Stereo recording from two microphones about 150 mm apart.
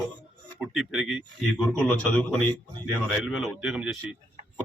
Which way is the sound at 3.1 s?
5° right (ahead or behind).